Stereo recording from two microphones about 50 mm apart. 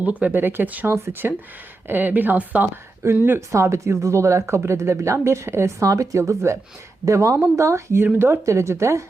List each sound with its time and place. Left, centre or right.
0.0 s speech: right
0.3 s speech: right
0.9 s speech: right
1.9 s speech: right
3.2 s speech: right
3.5 s speech: right